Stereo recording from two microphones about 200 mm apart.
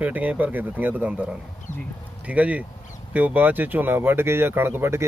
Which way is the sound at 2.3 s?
5° right (ahead or behind).